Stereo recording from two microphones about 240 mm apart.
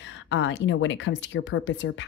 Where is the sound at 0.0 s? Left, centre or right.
Left.